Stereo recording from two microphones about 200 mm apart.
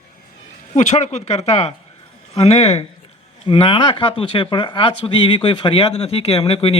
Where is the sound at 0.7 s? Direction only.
35° left (ahead or behind).